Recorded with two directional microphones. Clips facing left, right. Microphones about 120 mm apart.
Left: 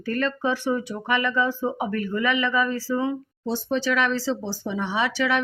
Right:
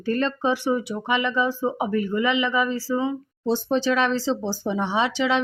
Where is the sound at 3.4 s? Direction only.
30° right (ahead or behind).